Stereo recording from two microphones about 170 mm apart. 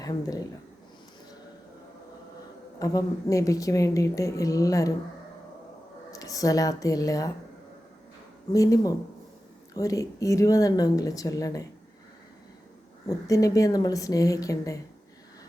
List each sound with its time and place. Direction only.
0.0 s a woman's voice: 20° left (ahead or behind)
2.7 s a woman's voice: 20° left (ahead or behind)
6.1 s a woman's voice: 20° left (ahead or behind)
8.5 s a woman's voice: 20° left (ahead or behind)
13.1 s a woman's voice: 20° left (ahead or behind)